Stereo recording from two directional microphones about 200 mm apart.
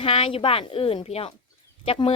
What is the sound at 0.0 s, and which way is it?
Speech, 30° left (ahead or behind).